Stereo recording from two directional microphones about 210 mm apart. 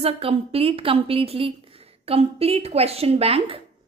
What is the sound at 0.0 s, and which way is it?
A woman's voice, 25° right (ahead or behind).